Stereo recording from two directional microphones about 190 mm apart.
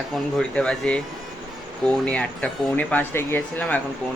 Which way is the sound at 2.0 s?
5° left (ahead or behind).